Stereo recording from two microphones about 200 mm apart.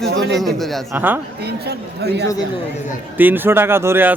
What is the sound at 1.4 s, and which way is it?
Speech, 55° right (ahead or behind).